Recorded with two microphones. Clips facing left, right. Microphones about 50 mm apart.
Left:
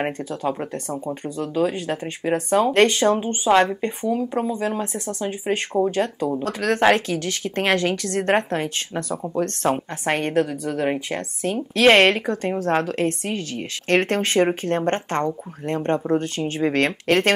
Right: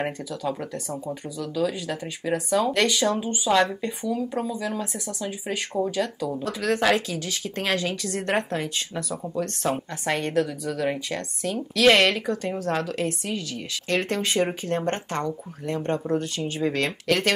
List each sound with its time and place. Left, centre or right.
0.0 s speech: left
8.3 s speech: left